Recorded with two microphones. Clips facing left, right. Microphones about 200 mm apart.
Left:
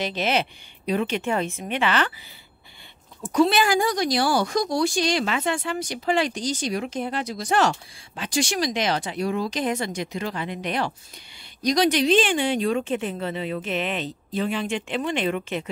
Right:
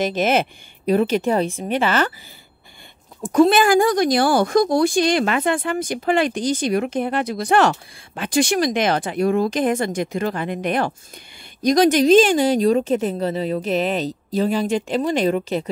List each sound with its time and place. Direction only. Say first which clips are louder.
0.0 s a woman's voice: right 6 dB; 45° right (ahead or behind)
3.3 s a woman's voice: right 5 dB; 50° right (ahead or behind)